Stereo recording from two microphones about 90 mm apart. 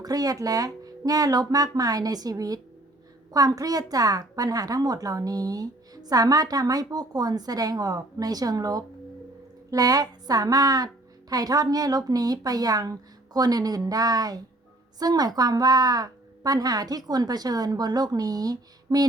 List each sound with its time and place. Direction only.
0.0 s a woman's voice: 45° right (ahead or behind)